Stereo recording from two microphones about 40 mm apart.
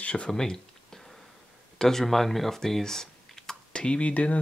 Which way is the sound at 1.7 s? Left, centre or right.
Centre.